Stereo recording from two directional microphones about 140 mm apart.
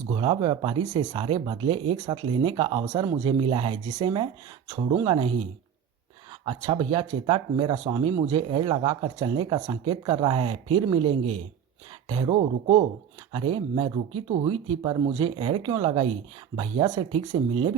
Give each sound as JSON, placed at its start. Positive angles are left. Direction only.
{"t": 0.1, "sound": "speech", "side_deg": -35}
{"t": 6.4, "sound": "speech", "side_deg": -35}